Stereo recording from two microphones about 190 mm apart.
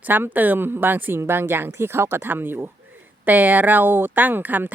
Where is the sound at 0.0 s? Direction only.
10° right (ahead or behind).